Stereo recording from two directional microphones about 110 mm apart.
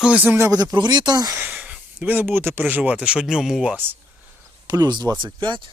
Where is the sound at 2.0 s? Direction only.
15° right (ahead or behind).